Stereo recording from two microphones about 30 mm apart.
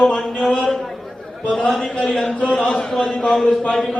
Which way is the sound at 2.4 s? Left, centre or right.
Left.